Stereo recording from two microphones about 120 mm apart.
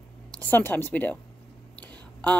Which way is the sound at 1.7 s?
10° left (ahead or behind).